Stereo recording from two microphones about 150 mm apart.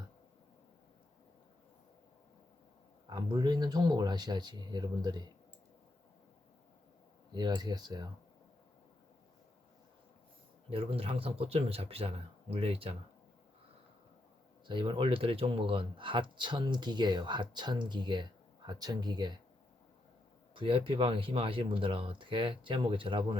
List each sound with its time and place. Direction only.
3.1 s speech: 25° right (ahead or behind)
7.3 s speech: 30° right (ahead or behind)
10.7 s speech: 40° right (ahead or behind)
14.7 s speech: 35° right (ahead or behind)
20.5 s speech: 35° right (ahead or behind)